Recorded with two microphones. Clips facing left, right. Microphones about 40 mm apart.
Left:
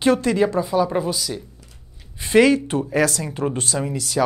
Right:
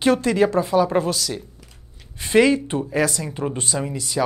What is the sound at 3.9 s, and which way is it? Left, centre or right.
Speech, centre.